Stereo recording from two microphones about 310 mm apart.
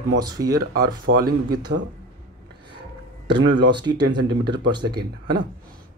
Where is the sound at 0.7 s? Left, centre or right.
Right.